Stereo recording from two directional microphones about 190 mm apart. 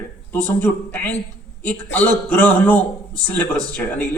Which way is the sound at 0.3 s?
10° left (ahead or behind).